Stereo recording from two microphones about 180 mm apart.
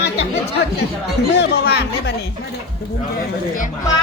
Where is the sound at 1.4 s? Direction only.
70° left (ahead or behind).